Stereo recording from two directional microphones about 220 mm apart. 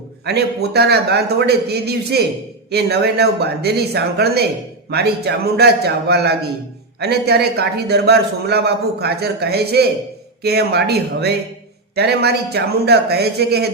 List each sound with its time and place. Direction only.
0.3 s a man's voice: 45° right (ahead or behind)